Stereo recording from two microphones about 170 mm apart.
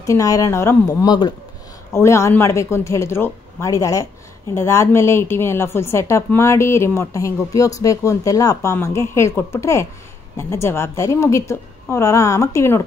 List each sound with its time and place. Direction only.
0.0 s a woman's voice: 20° left (ahead or behind)